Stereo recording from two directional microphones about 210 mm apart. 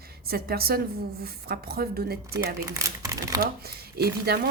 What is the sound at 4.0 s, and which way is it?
Speech, 50° right (ahead or behind).